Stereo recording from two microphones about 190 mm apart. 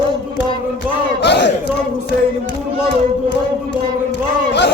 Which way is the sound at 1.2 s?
65° left (ahead or behind).